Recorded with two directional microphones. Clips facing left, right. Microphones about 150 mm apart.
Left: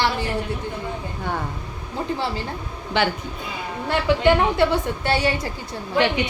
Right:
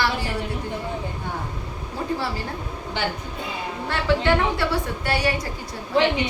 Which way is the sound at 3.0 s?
75° left (ahead or behind).